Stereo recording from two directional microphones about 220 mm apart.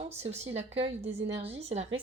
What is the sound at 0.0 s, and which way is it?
A woman's voice, 30° right (ahead or behind).